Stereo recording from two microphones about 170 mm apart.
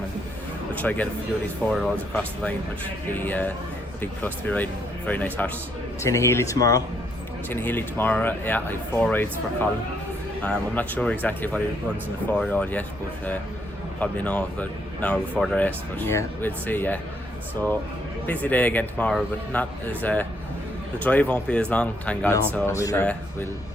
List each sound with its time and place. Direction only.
0.8 s speech: 10° left (ahead or behind)
14.0 s speech: 10° left (ahead or behind)
18.3 s speech: 10° left (ahead or behind)